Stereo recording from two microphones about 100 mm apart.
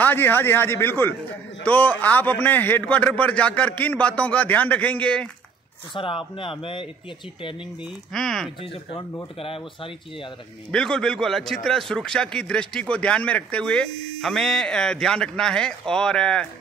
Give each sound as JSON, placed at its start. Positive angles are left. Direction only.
{"t": 0.0, "sound": "a man's voice", "side_deg": 20}
{"t": 5.9, "sound": "speech", "side_deg": 60}
{"t": 8.1, "sound": "speech", "side_deg": 5}
{"t": 10.7, "sound": "a man's voice", "side_deg": 5}